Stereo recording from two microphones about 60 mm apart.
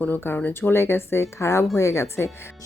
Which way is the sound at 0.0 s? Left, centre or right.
Left.